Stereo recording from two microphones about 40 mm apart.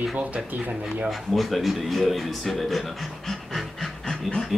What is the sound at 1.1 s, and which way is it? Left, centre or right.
Speech, centre.